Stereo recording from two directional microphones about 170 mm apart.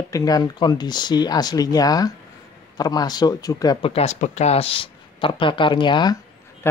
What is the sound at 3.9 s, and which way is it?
Speech, 40° left (ahead or behind).